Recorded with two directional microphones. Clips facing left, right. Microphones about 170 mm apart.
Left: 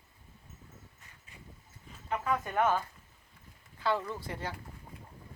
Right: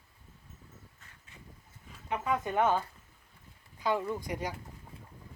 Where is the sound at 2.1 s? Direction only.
15° right (ahead or behind).